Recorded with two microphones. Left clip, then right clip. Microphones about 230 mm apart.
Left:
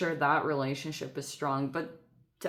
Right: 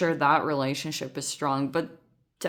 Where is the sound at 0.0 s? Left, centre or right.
Right.